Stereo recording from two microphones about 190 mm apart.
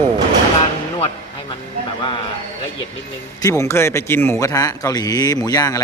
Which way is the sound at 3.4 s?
15° left (ahead or behind).